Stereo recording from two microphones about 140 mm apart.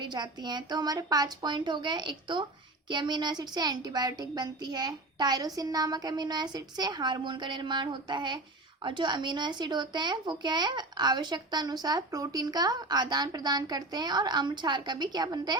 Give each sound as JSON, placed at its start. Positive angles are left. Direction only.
{"t": 0.0, "sound": "speech", "side_deg": -30}